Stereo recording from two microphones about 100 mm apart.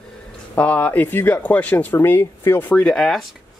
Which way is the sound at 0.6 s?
15° left (ahead or behind).